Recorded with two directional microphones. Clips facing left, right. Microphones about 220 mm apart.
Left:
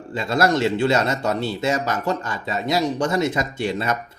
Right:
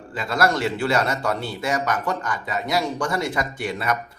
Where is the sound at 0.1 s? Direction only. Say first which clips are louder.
Left 3 dB; 25° left (ahead or behind).